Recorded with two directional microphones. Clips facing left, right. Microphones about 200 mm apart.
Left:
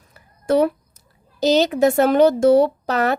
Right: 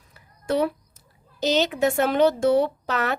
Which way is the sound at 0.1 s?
45° left (ahead or behind).